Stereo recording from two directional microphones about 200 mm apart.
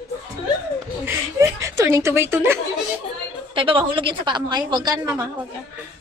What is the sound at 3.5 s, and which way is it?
A woman's voice, 25° right (ahead or behind).